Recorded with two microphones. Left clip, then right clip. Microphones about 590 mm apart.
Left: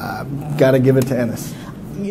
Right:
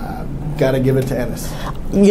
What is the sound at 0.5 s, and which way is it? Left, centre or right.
Speech, left.